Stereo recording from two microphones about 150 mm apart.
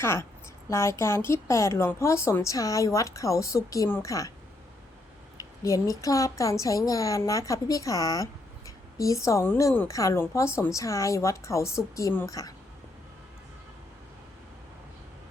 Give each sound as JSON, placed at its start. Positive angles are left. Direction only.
{"t": 0.0, "sound": "a woman's voice", "side_deg": 15}
{"t": 5.4, "sound": "a woman's voice", "side_deg": 20}